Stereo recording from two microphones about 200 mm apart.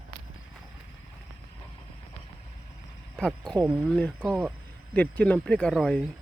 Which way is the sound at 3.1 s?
5° left (ahead or behind).